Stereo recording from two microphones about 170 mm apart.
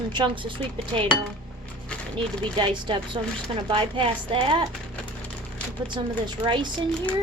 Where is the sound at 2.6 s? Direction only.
30° right (ahead or behind).